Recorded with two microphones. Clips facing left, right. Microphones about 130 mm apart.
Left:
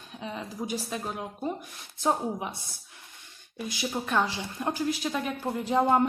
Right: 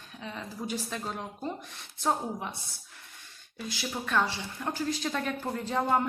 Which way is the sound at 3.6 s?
20° left (ahead or behind).